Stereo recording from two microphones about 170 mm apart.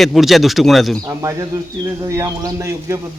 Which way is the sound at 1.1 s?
20° right (ahead or behind).